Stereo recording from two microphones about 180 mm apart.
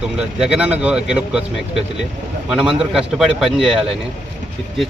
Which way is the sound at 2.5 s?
Centre (ahead or behind).